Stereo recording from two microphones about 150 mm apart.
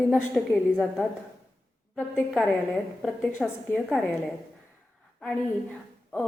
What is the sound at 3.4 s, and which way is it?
Speech, 5° right (ahead or behind).